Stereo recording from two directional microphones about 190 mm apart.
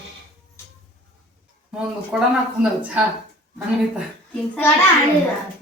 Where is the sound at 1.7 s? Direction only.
5° right (ahead or behind).